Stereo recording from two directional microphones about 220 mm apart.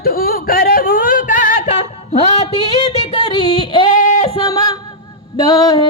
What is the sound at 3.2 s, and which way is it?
Music, 20° left (ahead or behind).